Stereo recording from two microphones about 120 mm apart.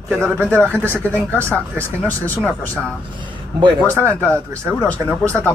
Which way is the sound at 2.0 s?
15° left (ahead or behind).